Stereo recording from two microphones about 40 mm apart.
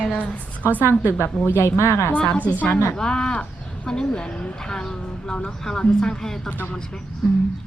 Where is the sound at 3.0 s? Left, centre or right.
Centre.